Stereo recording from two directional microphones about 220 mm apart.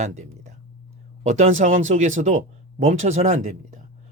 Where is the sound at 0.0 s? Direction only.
35° right (ahead or behind).